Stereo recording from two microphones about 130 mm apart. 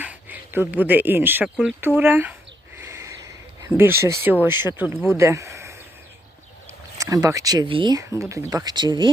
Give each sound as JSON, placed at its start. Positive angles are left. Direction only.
{"t": 0.0, "sound": "speech", "side_deg": -10}
{"t": 7.0, "sound": "speech", "side_deg": -25}
{"t": 7.9, "sound": "speech", "side_deg": -25}